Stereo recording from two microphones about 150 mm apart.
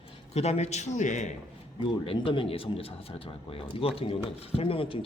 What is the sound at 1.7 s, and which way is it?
Speech, 35° left (ahead or behind).